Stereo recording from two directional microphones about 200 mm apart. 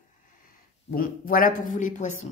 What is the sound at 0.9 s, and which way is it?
Speech, 45° left (ahead or behind).